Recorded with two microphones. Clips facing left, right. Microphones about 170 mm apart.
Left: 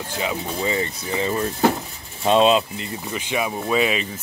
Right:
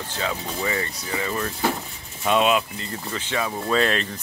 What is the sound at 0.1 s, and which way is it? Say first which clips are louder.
Speech: left 3 dB; 15° left (ahead or behind).